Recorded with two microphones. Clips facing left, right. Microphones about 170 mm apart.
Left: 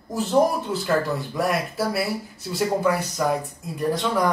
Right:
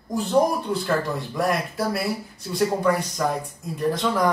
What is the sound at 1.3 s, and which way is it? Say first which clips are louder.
Speech: right 1 dB; centre (ahead or behind).